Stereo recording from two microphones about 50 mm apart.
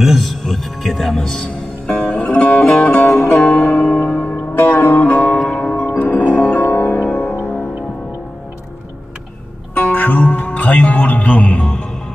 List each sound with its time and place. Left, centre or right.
0.0 s speech: centre
1.9 s music: left
5.9 s music: left
9.8 s music: left